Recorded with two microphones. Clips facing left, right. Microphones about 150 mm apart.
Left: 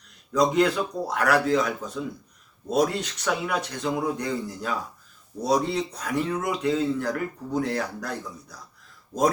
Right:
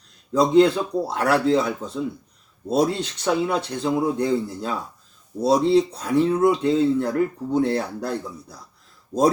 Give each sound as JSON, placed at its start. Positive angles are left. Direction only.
{"t": 0.3, "sound": "speech", "side_deg": -30}